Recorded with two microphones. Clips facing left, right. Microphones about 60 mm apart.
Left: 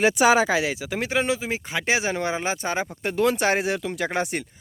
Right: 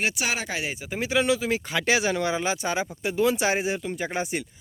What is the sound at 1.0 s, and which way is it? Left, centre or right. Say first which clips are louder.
Speech: right 2 dB; left.